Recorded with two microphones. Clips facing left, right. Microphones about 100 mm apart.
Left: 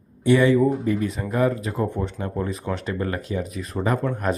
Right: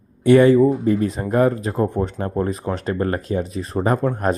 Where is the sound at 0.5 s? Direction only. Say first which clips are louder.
Right 4 dB; 35° right (ahead or behind).